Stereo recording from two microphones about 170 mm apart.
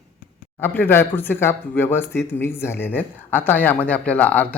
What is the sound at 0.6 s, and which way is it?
Speech, 10° left (ahead or behind).